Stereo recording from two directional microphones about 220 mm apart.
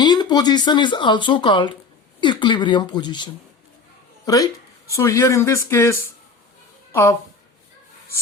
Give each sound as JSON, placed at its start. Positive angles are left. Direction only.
{"t": 0.0, "sound": "speech", "side_deg": 20}
{"t": 4.9, "sound": "speech", "side_deg": 15}